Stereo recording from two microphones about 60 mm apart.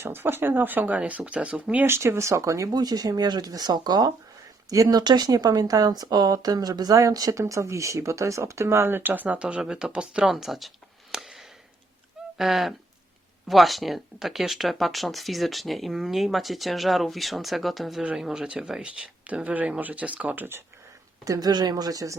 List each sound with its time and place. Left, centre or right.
0.0 s speech: right; by 1.8 s centre
1.8 s speech: right
4.7 s speech: right; by 10.3 s centre
10.3 s speech: centre
11.1 s a sound: centre
12.4 s speech: centre
19.3 s speech: right
21.2 s speech: right